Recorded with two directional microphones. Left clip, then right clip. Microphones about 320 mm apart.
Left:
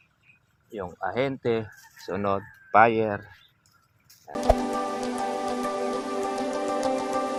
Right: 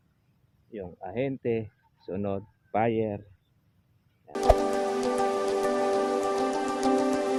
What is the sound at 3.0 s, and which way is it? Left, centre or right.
Speech, left.